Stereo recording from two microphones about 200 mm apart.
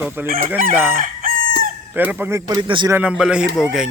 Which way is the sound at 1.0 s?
45° right (ahead or behind).